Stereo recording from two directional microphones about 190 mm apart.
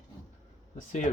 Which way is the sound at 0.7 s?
40° left (ahead or behind).